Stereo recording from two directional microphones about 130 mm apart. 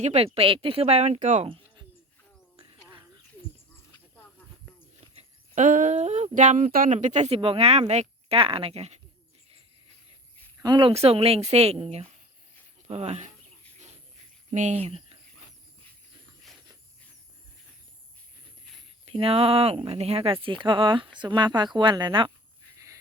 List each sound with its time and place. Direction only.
0.0 s speech: 55° right (ahead or behind)
1.5 s a sound: 40° right (ahead or behind)
5.1 s speech: 75° right (ahead or behind); by 8.4 s 55° right (ahead or behind)
8.4 s speech: 45° right (ahead or behind)
10.6 s speech: 35° right (ahead or behind); by 13.3 s 60° right (ahead or behind)
14.5 s speech: 65° right (ahead or behind)
19.0 s speech: 45° right (ahead or behind)